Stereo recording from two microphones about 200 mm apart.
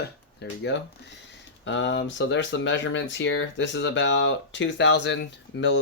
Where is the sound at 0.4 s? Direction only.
55° left (ahead or behind).